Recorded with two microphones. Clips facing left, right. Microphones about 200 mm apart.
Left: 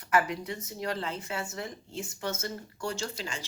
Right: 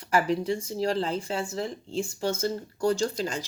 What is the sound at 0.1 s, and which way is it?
Speech, 30° right (ahead or behind).